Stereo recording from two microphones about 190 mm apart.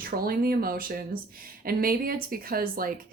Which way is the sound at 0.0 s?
50° right (ahead or behind).